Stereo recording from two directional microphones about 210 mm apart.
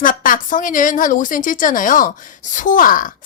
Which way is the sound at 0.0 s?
40° left (ahead or behind).